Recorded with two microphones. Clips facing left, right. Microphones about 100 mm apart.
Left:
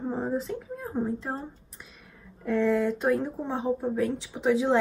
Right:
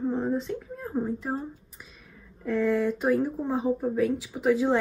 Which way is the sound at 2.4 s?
Centre (ahead or behind).